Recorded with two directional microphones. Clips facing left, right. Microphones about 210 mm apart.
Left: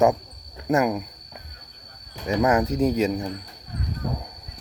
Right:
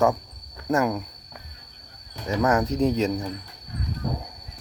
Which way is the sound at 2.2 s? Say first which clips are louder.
Left 2 dB; 10° left (ahead or behind).